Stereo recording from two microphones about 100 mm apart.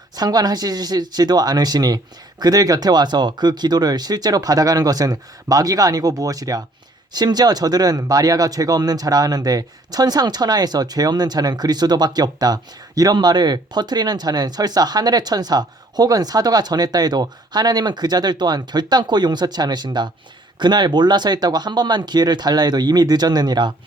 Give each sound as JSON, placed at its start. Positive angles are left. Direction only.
{"t": 0.2, "sound": "speech", "side_deg": -40}